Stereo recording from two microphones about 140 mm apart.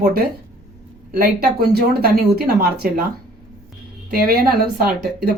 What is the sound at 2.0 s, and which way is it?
Speech, 90° right.